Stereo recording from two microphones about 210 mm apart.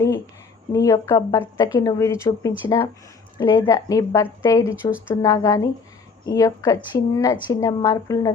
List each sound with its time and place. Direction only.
0.7 s a woman's voice: 15° left (ahead or behind)